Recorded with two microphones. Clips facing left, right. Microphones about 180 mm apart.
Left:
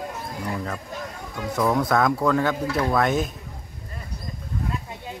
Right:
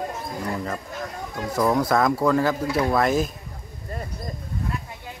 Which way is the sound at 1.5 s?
Centre (ahead or behind).